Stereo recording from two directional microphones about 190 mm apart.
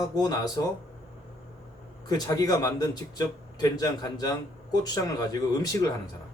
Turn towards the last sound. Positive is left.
turn(degrees=20)  # may be behind; listen again after turning